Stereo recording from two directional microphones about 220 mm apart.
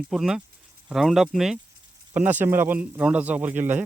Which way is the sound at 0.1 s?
Centre (ahead or behind).